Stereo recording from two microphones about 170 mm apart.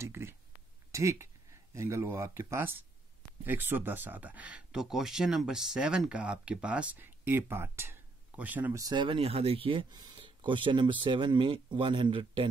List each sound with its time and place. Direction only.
0.0 s speech: 15° right (ahead or behind)
8.8 s speech: 30° right (ahead or behind)